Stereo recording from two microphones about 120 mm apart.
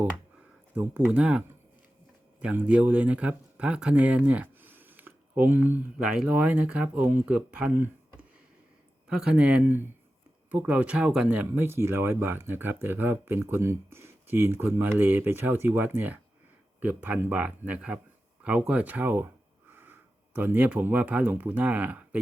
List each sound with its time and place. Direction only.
0.8 s speech: 10° right (ahead or behind)
9.0 s speech: 10° right (ahead or behind)